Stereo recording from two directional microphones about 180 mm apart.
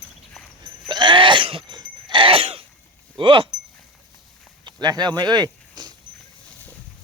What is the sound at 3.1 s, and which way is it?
Speech, 30° right (ahead or behind).